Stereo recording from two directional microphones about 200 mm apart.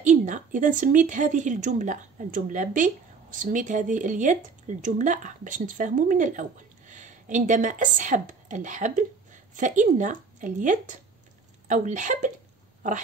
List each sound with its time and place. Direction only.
0.0 s a woman's voice: 40° right (ahead or behind)